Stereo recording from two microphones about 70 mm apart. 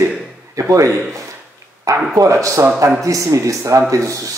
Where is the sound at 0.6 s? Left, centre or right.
Right.